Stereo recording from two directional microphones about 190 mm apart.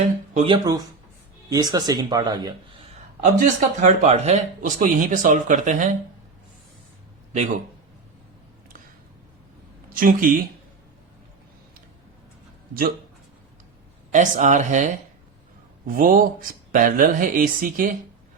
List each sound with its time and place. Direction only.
0.3 s speech: 25° right (ahead or behind)
3.4 s speech: 40° right (ahead or behind)
9.9 s speech: 45° right (ahead or behind)
14.1 s speech: 40° right (ahead or behind)